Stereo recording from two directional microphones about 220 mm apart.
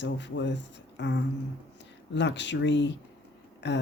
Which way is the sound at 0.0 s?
50° left (ahead or behind).